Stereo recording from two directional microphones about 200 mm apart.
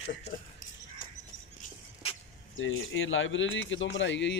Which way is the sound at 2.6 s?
75° left (ahead or behind).